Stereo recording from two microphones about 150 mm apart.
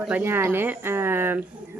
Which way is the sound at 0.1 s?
15° right (ahead or behind).